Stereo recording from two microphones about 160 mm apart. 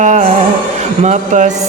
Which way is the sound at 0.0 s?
45° right (ahead or behind).